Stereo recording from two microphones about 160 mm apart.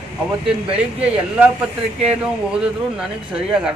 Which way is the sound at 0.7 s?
40° right (ahead or behind).